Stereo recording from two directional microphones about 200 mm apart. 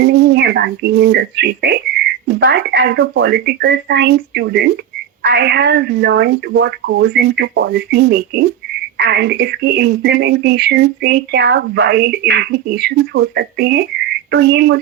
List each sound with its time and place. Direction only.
0.0 s speech: 55° right (ahead or behind)